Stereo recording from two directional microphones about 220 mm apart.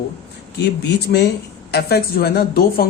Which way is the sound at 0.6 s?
50° left (ahead or behind).